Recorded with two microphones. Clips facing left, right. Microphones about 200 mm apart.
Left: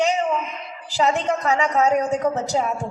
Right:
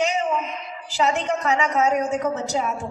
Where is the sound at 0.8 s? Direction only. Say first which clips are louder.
Left 2 dB; 40° left (ahead or behind).